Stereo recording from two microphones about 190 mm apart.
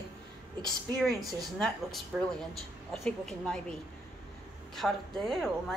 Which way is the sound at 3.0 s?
5° left (ahead or behind).